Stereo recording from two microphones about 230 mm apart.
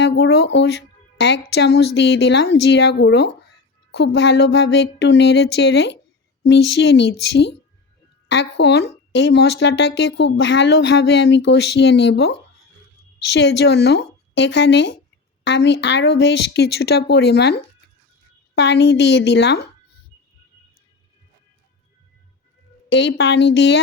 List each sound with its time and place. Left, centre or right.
0.0 s speech: left
13.6 s a woman's voice: left
22.9 s speech: left